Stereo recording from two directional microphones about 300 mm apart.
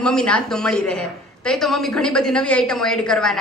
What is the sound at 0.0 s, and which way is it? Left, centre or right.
A woman's voice, centre.